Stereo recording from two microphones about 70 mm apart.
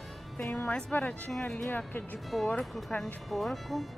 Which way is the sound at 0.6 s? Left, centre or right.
Centre.